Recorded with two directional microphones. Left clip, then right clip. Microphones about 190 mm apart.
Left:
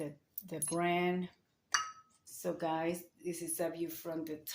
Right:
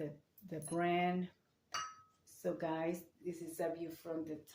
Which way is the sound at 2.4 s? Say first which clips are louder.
Left 3 dB; 25° left (ahead or behind).